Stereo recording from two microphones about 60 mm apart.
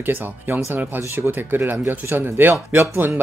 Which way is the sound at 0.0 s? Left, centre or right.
Right.